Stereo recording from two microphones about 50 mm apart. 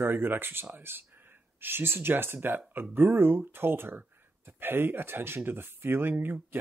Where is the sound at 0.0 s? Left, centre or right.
Right.